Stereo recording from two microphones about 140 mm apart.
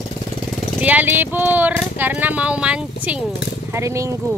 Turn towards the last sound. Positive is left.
turn(degrees=-20)  # may be behind; listen again after turning